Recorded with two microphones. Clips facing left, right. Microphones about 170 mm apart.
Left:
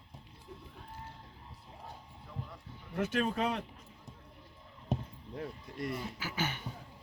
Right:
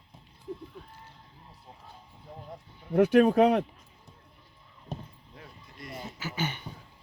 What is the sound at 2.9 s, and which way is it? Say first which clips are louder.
Speech: right 12 dB; 60° right (ahead or behind).